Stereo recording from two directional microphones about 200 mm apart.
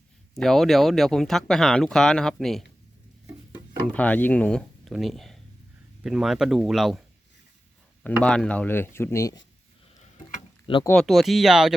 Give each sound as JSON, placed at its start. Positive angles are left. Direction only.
{"t": 0.3, "sound": "speech", "side_deg": 0}
{"t": 3.9, "sound": "speech", "side_deg": 5}
{"t": 8.2, "sound": "speech", "side_deg": 5}
{"t": 10.0, "sound": "a sound", "side_deg": 30}
{"t": 10.8, "sound": "speech", "side_deg": 0}